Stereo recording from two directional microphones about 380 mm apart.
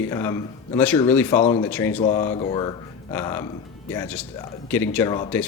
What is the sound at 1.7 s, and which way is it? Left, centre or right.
Speech, centre.